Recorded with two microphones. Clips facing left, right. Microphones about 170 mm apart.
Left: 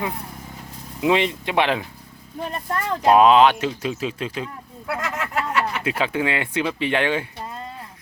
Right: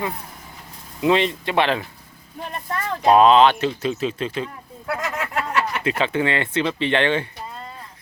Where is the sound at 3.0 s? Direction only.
5° left (ahead or behind).